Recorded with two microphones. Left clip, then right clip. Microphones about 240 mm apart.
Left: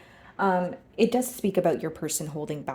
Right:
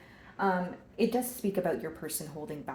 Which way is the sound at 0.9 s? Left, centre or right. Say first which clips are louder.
Left 6 dB; left.